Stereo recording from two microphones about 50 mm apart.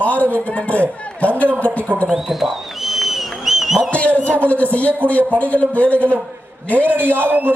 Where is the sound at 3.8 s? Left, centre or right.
Left.